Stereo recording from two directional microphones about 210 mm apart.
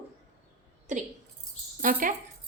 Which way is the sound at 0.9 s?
35° right (ahead or behind).